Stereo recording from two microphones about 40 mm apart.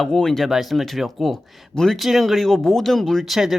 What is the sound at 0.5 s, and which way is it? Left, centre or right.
Speech, centre.